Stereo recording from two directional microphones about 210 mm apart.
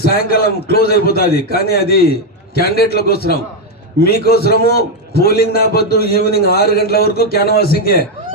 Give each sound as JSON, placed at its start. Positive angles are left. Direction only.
{"t": 0.0, "sound": "a man's voice", "side_deg": 45}